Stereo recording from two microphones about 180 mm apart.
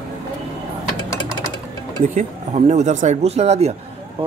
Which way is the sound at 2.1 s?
40° right (ahead or behind).